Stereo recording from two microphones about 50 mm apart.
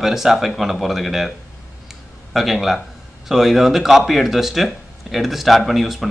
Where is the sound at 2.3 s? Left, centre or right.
Centre.